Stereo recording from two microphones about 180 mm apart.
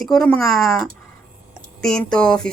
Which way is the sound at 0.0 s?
5° left (ahead or behind).